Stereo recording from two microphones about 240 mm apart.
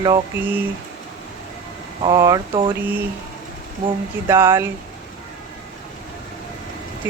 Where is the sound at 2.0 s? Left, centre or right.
Centre.